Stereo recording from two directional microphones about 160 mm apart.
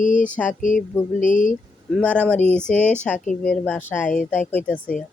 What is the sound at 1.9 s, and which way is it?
Speech, 5° left (ahead or behind).